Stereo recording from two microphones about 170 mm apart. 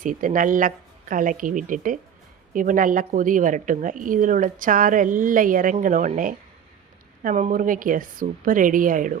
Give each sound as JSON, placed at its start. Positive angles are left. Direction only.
{"t": 0.0, "sound": "speech", "side_deg": -50}